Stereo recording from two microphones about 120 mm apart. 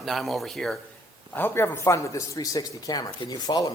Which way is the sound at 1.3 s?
20° left (ahead or behind).